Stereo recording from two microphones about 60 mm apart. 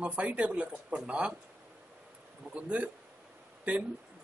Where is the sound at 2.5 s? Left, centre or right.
Right.